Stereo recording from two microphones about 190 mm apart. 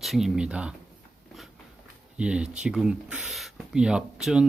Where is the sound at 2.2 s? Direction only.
5° right (ahead or behind).